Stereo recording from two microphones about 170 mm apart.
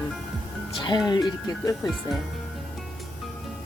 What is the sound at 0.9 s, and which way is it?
Speech, 25° left (ahead or behind).